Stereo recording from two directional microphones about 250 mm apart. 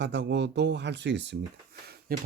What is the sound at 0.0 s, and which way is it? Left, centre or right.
Speech, right.